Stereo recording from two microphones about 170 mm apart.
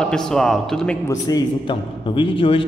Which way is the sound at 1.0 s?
20° left (ahead or behind).